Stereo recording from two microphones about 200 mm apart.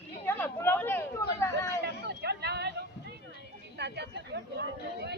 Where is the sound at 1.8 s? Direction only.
55° right (ahead or behind).